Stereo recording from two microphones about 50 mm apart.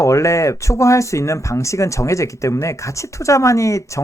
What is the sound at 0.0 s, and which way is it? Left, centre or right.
Speech, left.